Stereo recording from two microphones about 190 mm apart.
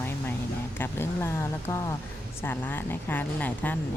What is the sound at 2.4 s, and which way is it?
Speech, 10° left (ahead or behind).